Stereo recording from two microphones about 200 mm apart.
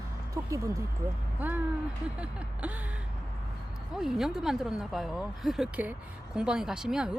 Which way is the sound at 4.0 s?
Centre (ahead or behind).